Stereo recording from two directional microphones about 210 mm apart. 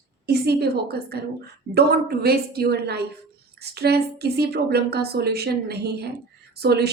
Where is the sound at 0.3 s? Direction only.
50° right (ahead or behind).